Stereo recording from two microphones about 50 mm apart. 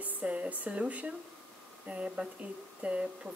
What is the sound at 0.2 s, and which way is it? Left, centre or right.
Speech, right.